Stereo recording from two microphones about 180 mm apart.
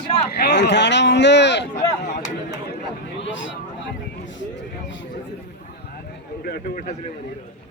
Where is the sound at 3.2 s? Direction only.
90° left.